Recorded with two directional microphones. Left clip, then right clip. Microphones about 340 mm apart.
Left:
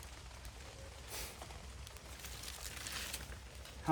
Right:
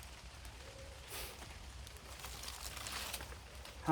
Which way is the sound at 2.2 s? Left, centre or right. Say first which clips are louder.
Right 1 dB; centre.